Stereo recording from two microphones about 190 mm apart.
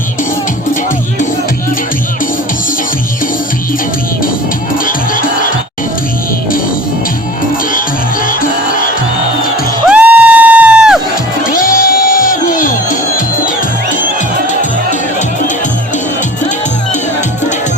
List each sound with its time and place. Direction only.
4.9 s music: 45° left (ahead or behind)
8.3 s music: 45° left (ahead or behind)
9.8 s music: 5° right (ahead or behind)
11.4 s music: 45° left (ahead or behind)